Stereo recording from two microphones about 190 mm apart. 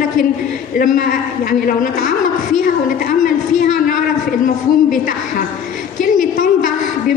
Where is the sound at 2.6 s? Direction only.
45° left (ahead or behind).